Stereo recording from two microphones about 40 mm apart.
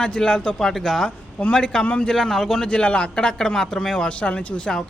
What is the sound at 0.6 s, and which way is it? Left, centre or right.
A man's voice, centre.